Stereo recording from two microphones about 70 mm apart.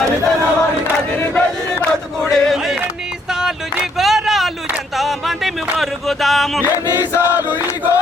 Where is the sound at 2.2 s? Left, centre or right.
Centre.